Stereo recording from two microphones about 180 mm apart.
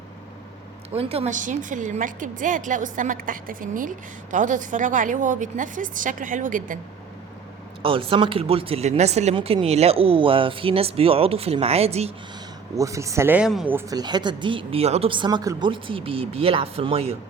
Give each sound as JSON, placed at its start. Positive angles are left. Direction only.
{"t": 0.9, "sound": "a woman's voice", "side_deg": -35}
{"t": 7.8, "sound": "speech", "side_deg": -30}
{"t": 12.7, "sound": "speech", "side_deg": -20}